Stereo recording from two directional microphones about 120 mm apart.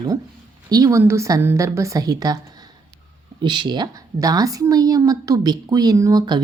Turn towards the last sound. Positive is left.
turn(degrees=-35)  # may be behind; listen again after turning